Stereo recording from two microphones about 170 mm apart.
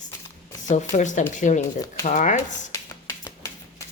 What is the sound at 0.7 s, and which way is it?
A woman's voice, 45° left (ahead or behind).